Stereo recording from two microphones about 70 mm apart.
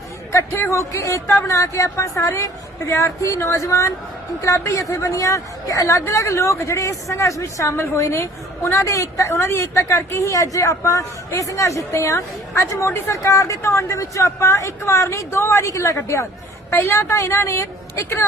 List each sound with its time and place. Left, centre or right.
0.7 s a woman's voice: left
16.7 s a woman's voice: left